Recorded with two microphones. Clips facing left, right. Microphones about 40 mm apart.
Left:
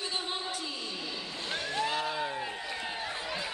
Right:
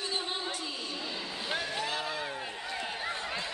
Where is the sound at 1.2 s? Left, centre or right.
Centre.